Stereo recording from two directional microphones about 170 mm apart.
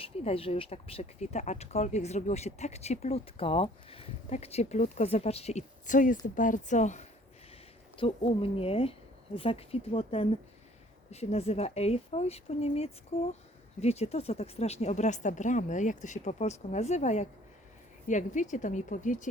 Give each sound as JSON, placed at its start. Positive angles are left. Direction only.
{"t": 0.0, "sound": "speech", "side_deg": 35}
{"t": 7.9, "sound": "speech", "side_deg": 35}